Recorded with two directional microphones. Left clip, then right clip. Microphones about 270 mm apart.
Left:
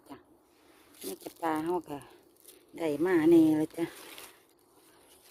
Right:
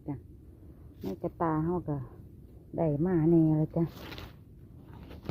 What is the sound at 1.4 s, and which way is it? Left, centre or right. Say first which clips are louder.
Speech: left 1 dB; centre.